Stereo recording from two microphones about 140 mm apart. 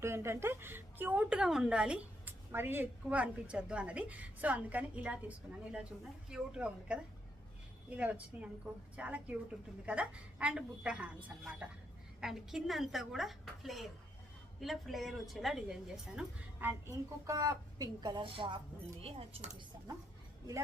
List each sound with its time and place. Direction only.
0.0 s a woman's voice: 20° right (ahead or behind)
6.2 s a woman's voice: 5° right (ahead or behind); by 18.6 s 35° right (ahead or behind)
19.0 s speech: 50° right (ahead or behind)